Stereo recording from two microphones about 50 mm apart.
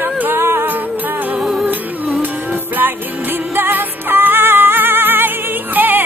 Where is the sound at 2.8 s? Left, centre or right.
Right.